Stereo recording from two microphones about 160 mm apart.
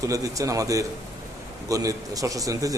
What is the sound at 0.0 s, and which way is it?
A man's voice, 20° right (ahead or behind).